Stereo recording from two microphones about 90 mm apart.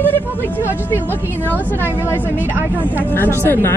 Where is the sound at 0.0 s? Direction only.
20° left (ahead or behind).